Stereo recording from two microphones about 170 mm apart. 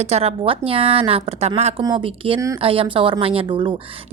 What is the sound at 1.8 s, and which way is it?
Speech, 30° right (ahead or behind).